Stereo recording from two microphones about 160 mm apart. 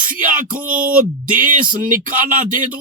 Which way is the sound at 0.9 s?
55° right (ahead or behind).